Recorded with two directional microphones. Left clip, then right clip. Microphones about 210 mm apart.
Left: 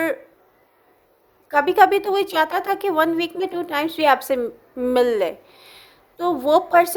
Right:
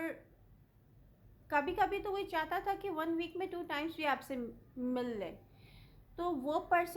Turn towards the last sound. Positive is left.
turn(degrees=40)  # may be behind; listen again after turning